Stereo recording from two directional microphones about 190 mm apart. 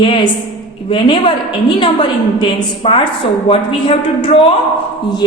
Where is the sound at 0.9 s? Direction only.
25° left (ahead or behind).